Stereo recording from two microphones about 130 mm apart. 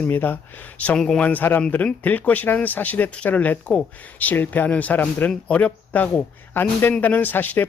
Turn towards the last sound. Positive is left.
turn(degrees=15)  # may be behind; listen again after turning